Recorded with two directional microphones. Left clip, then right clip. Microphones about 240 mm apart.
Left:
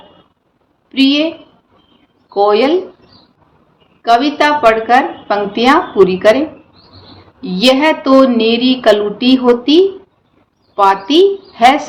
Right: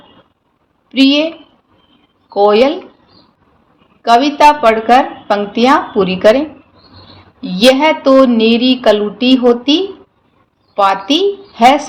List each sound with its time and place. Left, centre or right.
0.9 s a woman's voice: right
2.3 s a woman's voice: right
4.0 s a woman's voice: right
7.4 s a woman's voice: right